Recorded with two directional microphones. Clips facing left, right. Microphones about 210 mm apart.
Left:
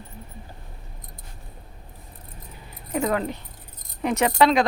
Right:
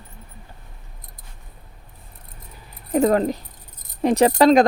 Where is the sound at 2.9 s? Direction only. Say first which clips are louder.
Right 7 dB; 40° right (ahead or behind).